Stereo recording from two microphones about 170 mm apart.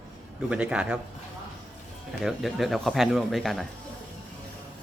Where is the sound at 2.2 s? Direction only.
Centre (ahead or behind).